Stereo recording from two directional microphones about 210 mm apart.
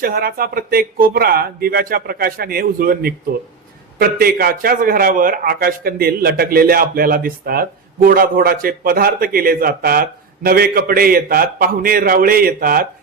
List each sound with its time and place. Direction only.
0.0 s a man's voice: 45° right (ahead or behind)